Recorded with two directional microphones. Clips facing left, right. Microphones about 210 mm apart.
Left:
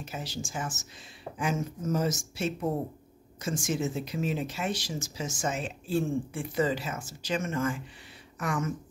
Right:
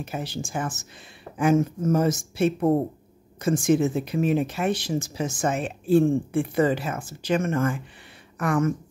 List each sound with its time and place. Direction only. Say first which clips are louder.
0.0 s speech: right 6 dB; 55° right (ahead or behind)